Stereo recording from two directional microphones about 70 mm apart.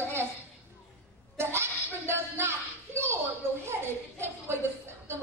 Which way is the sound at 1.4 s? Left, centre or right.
Right.